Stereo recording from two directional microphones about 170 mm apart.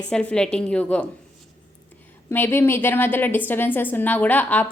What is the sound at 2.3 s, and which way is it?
A woman's voice, 15° left (ahead or behind).